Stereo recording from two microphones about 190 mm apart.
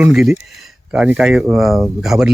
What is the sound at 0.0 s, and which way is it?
Speech, centre (ahead or behind).